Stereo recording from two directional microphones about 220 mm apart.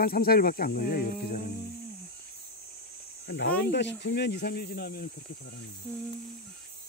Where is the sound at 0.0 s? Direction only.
40° left (ahead or behind).